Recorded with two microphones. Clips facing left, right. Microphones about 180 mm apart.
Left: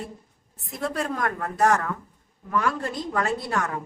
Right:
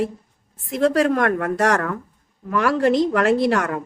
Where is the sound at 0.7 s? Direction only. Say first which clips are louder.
Right 11 dB; 90° right.